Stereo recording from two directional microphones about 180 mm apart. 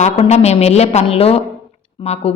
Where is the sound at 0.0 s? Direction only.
35° left (ahead or behind).